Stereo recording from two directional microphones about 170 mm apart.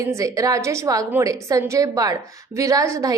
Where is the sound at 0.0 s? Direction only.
20° right (ahead or behind).